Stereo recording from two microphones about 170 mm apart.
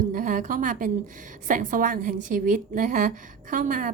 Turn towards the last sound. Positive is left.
turn(degrees=-50)  # may be behind; listen again after turning